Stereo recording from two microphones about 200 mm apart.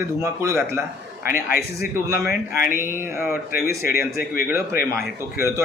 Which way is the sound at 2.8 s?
10° right (ahead or behind).